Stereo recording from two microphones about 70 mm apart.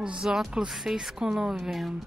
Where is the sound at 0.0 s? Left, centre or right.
Centre.